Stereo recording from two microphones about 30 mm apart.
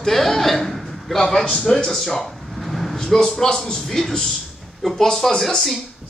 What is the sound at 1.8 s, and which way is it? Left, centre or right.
Speech, centre.